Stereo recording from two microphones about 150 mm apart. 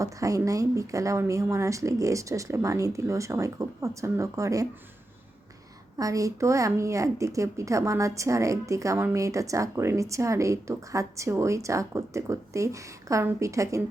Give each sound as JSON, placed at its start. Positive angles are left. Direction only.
{"t": 0.0, "sound": "a woman's voice", "side_deg": -20}
{"t": 6.0, "sound": "a woman's voice", "side_deg": -20}